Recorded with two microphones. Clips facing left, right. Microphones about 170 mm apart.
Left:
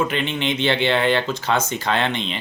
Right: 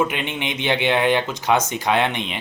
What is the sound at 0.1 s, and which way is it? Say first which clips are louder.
Speech: left 3 dB; 15° right (ahead or behind).